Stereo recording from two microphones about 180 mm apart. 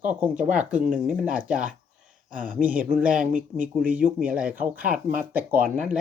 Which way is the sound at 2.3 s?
45° right (ahead or behind).